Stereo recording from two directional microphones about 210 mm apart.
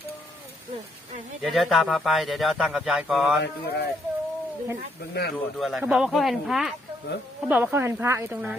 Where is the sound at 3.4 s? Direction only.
50° left (ahead or behind).